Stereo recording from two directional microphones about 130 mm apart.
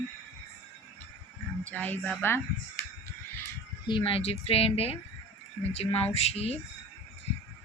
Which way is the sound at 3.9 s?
40° left (ahead or behind).